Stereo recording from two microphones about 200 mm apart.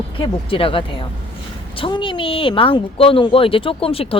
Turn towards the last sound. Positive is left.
turn(degrees=30)  # may be behind; listen again after turning